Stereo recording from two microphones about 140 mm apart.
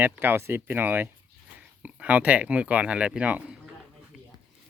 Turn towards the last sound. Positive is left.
turn(degrees=-10)  # may be behind; listen again after turning